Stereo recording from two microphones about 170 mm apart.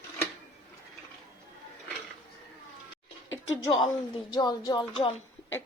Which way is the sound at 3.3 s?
25° left (ahead or behind).